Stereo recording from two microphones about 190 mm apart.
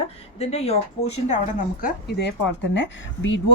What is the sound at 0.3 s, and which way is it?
Speech, 35° left (ahead or behind).